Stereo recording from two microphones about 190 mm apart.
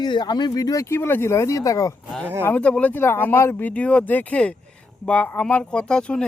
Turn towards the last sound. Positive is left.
turn(degrees=5)  # may be behind; listen again after turning